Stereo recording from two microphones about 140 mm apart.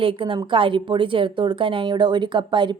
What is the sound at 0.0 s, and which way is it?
Speech, 40° right (ahead or behind).